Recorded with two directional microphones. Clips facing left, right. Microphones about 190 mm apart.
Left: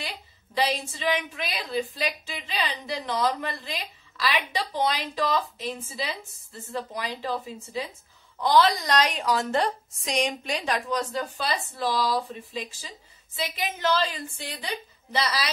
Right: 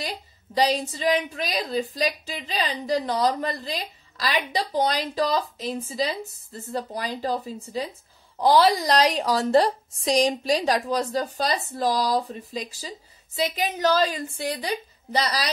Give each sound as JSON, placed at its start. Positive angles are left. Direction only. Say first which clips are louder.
{"t": 0.7, "sound": "a woman's voice", "louder": "right 4 dB", "side_deg": -40}